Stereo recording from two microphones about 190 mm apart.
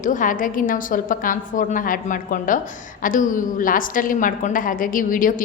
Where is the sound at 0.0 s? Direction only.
45° left (ahead or behind).